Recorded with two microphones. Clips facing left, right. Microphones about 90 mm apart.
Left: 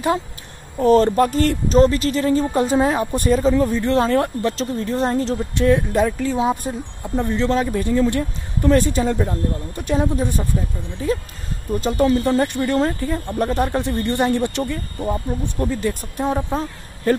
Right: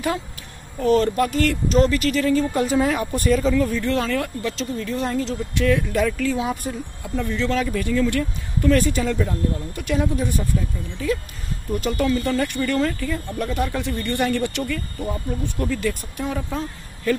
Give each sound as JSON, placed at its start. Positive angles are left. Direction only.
{"t": 0.7, "sound": "speech", "side_deg": 35}